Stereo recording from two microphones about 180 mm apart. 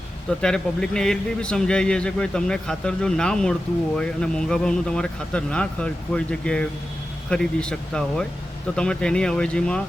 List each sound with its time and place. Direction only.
0.4 s a man's voice: 5° left (ahead or behind)